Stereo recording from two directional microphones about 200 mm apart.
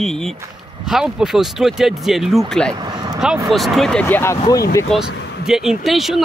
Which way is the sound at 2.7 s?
20° right (ahead or behind).